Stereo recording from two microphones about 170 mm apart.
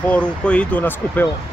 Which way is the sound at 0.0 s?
5° left (ahead or behind).